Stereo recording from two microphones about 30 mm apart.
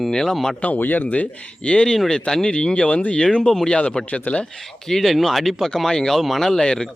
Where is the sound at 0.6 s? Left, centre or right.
Left.